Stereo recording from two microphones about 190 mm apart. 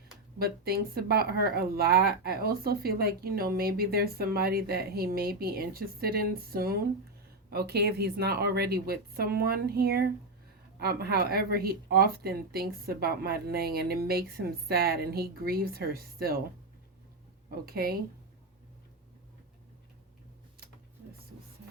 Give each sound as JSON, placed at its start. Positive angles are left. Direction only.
{"t": 0.3, "sound": "a woman's voice", "side_deg": -55}
{"t": 17.7, "sound": "a woman's voice", "side_deg": -50}